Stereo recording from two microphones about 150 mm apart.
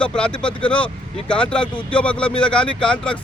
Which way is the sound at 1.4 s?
10° left (ahead or behind).